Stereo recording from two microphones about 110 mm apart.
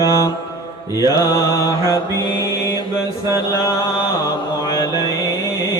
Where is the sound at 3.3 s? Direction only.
30° left (ahead or behind).